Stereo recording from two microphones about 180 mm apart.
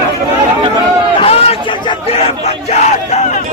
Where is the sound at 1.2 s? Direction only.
35° left (ahead or behind).